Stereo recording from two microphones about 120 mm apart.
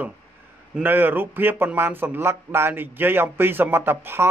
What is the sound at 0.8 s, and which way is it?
Speech, 15° right (ahead or behind).